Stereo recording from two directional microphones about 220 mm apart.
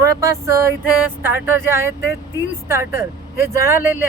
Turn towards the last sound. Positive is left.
turn(degrees=-10)  # may be behind; listen again after turning